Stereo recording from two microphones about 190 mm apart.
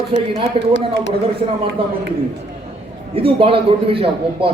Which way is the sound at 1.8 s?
30° right (ahead or behind).